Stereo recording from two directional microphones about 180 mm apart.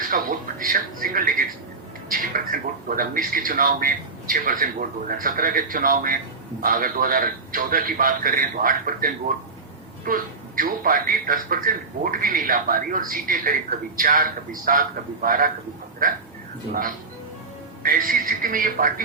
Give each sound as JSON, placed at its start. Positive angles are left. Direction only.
{"t": 0.1, "sound": "music", "side_deg": -50}
{"t": 2.0, "sound": "a man's voice", "side_deg": -50}
{"t": 17.8, "sound": "a man's voice", "side_deg": -50}